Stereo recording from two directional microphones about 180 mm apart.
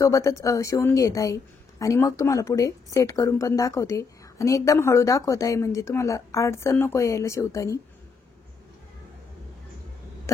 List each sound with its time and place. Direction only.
0.0 s a woman's voice: 20° left (ahead or behind)